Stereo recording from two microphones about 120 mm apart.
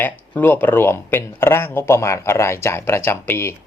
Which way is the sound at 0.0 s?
15° left (ahead or behind).